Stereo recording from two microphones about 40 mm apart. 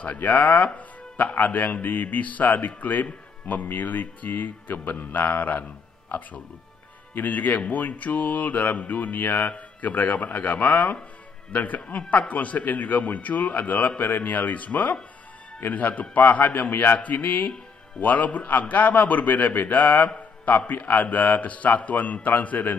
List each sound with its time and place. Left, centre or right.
0.0 s a man's voice: left
7.2 s a man's voice: left